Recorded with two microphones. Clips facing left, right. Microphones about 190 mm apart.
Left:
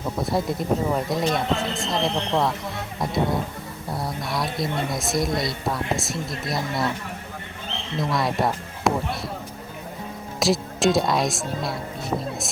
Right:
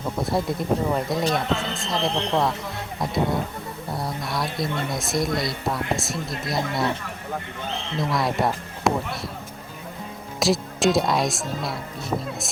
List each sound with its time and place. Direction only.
0.2 s speech: centre (ahead or behind)
7.9 s speech: centre (ahead or behind)
10.4 s speech: centre (ahead or behind)